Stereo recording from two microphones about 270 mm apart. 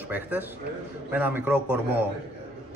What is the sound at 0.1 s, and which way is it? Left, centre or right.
A man's voice, centre.